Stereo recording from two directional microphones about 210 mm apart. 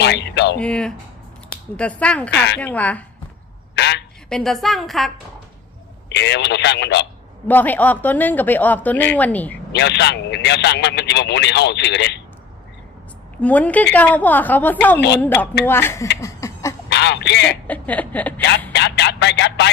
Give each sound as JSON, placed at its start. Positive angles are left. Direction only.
{"t": 0.0, "sound": "a man's voice", "side_deg": 55}
{"t": 0.6, "sound": "a woman's voice", "side_deg": 5}
{"t": 3.8, "sound": "a woman's voice", "side_deg": 55}
{"t": 4.3, "sound": "a woman's voice", "side_deg": 0}
{"t": 6.1, "sound": "a man's voice", "side_deg": 55}
{"t": 7.4, "sound": "speech", "side_deg": 10}
{"t": 9.7, "sound": "a man's voice", "side_deg": 55}
{"t": 13.4, "sound": "speech", "side_deg": 5}
{"t": 16.2, "sound": "a sound", "side_deg": 15}
{"t": 16.9, "sound": "speech", "side_deg": 55}
{"t": 17.7, "sound": "speech", "side_deg": 10}
{"t": 18.7, "sound": "a man's voice", "side_deg": 55}